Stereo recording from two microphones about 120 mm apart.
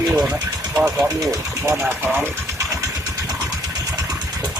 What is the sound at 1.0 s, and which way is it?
Speech, 25° right (ahead or behind).